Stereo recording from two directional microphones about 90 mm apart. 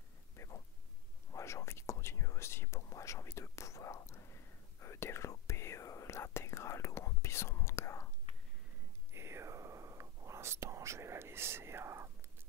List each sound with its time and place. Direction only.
0.4 s a sound: 35° left (ahead or behind)
1.3 s whispering: 35° left (ahead or behind)
9.1 s whispering: 30° right (ahead or behind)